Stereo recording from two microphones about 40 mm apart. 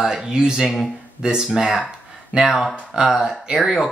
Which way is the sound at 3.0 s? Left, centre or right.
Centre.